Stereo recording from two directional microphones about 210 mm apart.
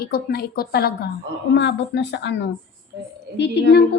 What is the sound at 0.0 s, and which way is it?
A woman's voice, 45° left (ahead or behind).